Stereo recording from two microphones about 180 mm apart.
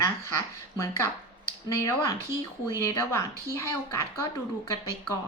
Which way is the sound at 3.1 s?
15° left (ahead or behind).